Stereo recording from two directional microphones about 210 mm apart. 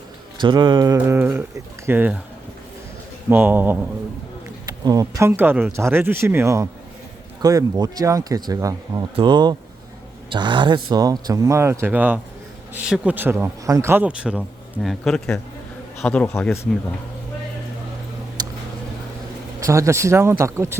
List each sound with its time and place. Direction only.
0.3 s speech: 20° right (ahead or behind)
3.2 s a man's voice: 10° right (ahead or behind); by 16.6 s 10° left (ahead or behind)
18.4 s a sound: 20° right (ahead or behind)
19.5 s speech: 15° right (ahead or behind)